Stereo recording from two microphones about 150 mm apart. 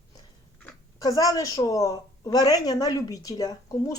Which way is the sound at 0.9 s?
25° left (ahead or behind).